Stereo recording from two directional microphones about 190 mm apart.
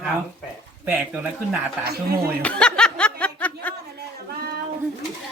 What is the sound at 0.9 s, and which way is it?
Speech, 10° right (ahead or behind).